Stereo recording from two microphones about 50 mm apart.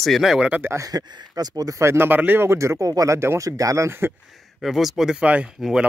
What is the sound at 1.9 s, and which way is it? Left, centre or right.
Speech, right.